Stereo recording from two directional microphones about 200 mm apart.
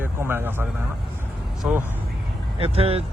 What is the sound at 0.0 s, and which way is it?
Vehicle, 10° right (ahead or behind).